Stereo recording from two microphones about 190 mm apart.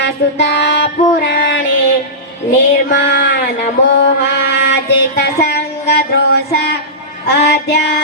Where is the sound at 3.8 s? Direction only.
65° left (ahead or behind).